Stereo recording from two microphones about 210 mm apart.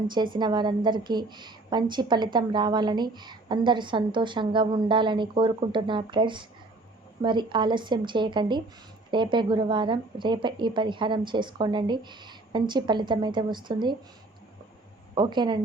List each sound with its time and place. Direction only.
0.3 s a woman's voice: 20° right (ahead or behind)
15.1 s a woman's voice: 20° right (ahead or behind)